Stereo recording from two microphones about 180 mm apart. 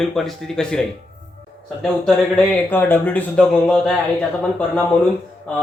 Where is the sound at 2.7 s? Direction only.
10° left (ahead or behind).